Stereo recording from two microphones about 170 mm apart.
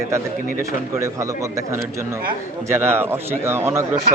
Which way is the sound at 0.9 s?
20° right (ahead or behind).